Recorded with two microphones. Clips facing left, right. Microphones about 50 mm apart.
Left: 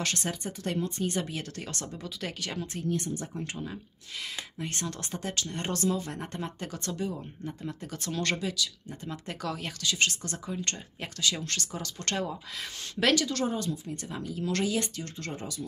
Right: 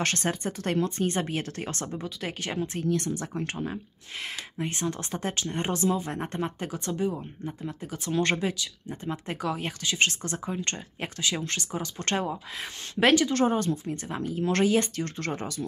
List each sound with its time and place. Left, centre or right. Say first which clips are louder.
0.0 s speech: right 5 dB; right
2.8 s speech: right 2 dB; right
3.4 s speech: right 5 dB; right
4.2 s speech: right 4 dB; right
5.1 s speech: right 4 dB; right; by 8.2 s centre
8.2 s speech: right 4 dB; right
13.5 s speech: right 6 dB; right